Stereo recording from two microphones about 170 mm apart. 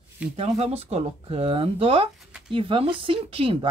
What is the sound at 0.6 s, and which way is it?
Speech, 35° right (ahead or behind).